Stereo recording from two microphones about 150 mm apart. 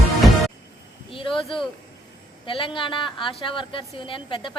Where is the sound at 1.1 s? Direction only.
35° left (ahead or behind).